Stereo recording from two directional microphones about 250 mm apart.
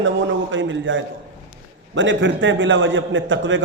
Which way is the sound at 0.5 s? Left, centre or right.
Right.